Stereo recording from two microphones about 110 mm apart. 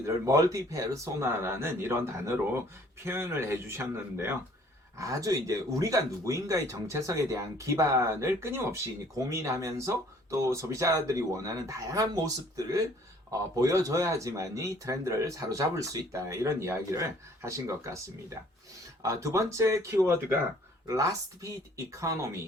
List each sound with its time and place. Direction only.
0.0 s speech: 30° right (ahead or behind)
4.9 s speech: 30° right (ahead or behind)
19.0 s speech: 30° right (ahead or behind)